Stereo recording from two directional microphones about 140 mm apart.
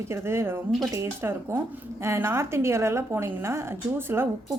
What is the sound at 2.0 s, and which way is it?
A woman's voice, 20° right (ahead or behind).